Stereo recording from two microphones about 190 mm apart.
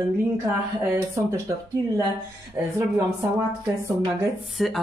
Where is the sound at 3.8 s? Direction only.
15° right (ahead or behind).